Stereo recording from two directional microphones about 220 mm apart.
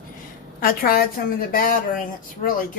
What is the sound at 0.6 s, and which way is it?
A woman's voice, 45° left (ahead or behind).